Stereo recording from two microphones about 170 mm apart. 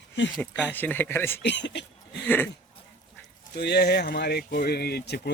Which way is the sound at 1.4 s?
90° left.